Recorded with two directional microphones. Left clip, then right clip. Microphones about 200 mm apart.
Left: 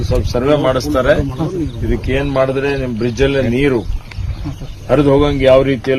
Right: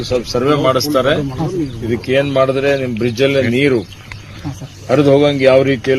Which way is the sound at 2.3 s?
10° left (ahead or behind).